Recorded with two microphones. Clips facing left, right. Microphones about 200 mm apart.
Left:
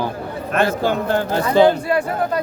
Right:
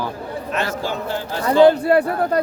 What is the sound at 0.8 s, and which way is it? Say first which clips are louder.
Speech: left 6 dB; 55° left (ahead or behind).